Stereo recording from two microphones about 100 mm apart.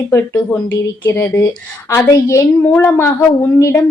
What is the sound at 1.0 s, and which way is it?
Speech, 25° left (ahead or behind).